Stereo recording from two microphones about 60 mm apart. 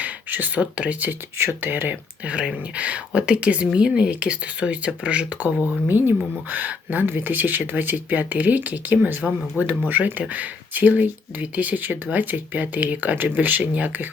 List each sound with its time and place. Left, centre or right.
0.0 s a sound: right
0.6 s speech: right
5.6 s speech: right
9.6 s speech: left
9.9 s speech: right